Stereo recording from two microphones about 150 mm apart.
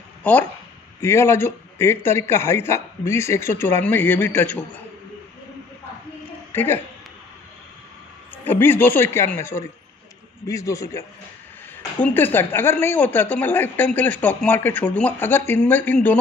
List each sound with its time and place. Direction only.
0.2 s speech: 10° left (ahead or behind)
6.5 s a woman's voice: 15° left (ahead or behind)
8.5 s a man's voice: 15° left (ahead or behind)